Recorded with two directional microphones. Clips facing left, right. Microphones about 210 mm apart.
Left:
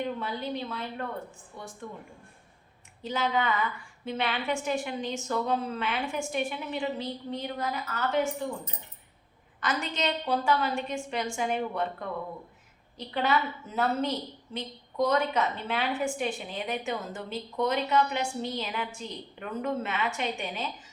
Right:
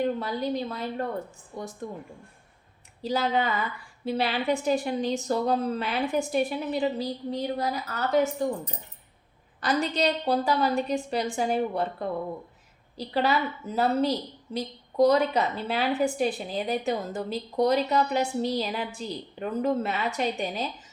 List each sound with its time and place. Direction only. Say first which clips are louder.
0.0 s a woman's voice: right 5 dB; 40° right (ahead or behind)
3.0 s a woman's voice: right 3 dB; 35° right (ahead or behind)